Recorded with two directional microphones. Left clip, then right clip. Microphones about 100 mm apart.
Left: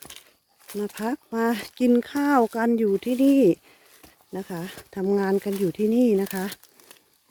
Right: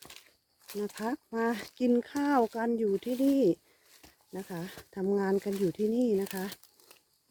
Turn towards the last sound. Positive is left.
turn(degrees=50)  # may be behind; listen again after turning